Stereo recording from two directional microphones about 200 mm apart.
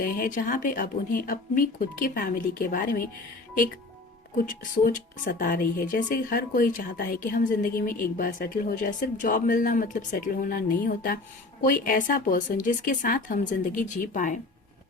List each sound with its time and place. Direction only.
0.0 s a woman's voice: 40° left (ahead or behind)
4.4 s a woman's voice: 40° left (ahead or behind)